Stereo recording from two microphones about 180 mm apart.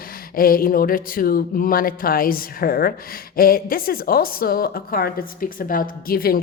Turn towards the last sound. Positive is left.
turn(degrees=55)  # may be behind; listen again after turning